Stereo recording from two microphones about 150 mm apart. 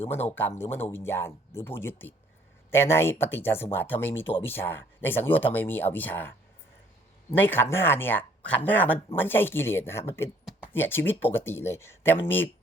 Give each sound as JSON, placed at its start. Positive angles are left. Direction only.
{"t": 0.0, "sound": "speech", "side_deg": 15}